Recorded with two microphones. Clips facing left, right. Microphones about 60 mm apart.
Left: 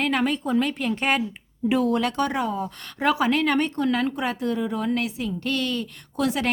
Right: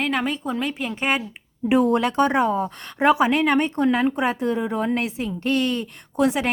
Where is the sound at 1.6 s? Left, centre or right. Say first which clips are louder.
Right 3 dB; right.